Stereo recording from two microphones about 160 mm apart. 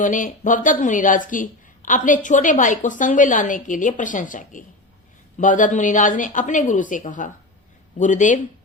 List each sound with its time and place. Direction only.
0.0 s a woman's voice: 55° left (ahead or behind)